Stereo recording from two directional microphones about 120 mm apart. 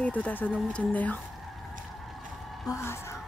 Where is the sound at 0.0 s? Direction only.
10° left (ahead or behind).